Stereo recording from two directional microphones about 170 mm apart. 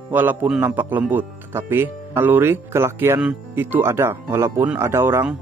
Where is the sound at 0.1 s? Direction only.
10° right (ahead or behind).